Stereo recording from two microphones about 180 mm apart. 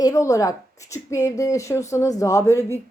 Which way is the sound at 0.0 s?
20° left (ahead or behind).